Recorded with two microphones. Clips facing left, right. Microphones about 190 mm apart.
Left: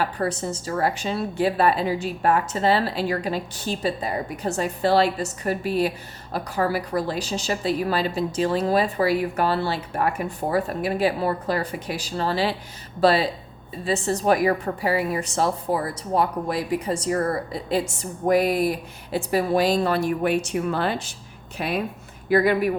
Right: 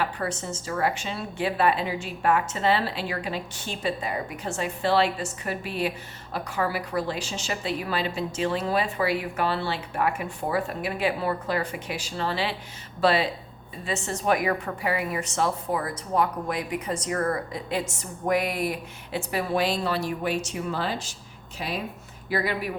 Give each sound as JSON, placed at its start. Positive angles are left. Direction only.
{"t": 0.0, "sound": "a woman's voice", "side_deg": 40}